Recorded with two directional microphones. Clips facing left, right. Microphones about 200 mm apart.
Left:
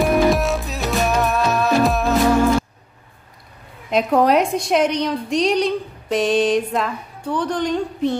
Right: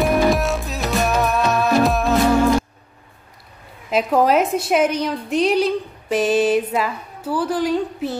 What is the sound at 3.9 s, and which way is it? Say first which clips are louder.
A woman's voice: left 1 dB; 5° right (ahead or behind).